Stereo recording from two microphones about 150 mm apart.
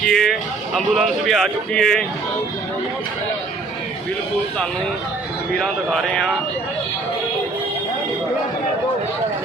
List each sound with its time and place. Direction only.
0.0 s speech: 5° left (ahead or behind)
5.5 s speech: centre (ahead or behind)